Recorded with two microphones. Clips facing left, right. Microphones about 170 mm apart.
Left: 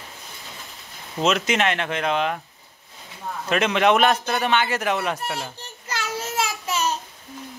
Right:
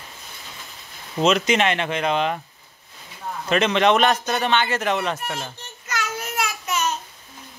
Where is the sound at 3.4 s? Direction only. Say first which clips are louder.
Right 1 dB; 5° left (ahead or behind).